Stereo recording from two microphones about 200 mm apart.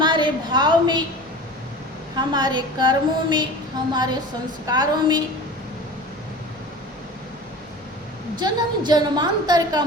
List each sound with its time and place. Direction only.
0.0 s a sound: 25° right (ahead or behind)
2.1 s a woman's voice: 20° right (ahead or behind)
8.4 s a woman's voice: 20° right (ahead or behind)